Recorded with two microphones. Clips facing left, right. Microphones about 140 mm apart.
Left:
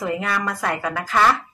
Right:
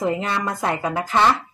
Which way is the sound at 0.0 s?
25° right (ahead or behind).